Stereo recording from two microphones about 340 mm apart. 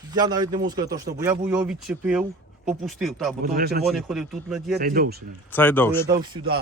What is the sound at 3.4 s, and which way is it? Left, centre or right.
Speech, right.